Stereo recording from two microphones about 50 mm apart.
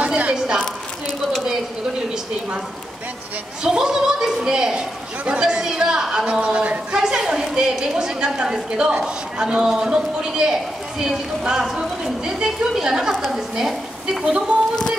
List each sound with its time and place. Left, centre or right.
0.0 s a sound: right
3.6 s a woman's voice: centre
6.4 s a woman's voice: right; by 14.2 s centre
14.2 s speech: right